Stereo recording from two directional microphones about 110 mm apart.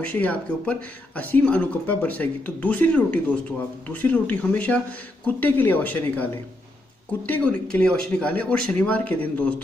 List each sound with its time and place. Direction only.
0.0 s speech: 15° left (ahead or behind)